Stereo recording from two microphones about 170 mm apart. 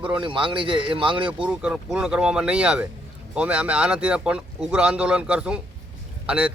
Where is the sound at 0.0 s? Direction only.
30° right (ahead or behind).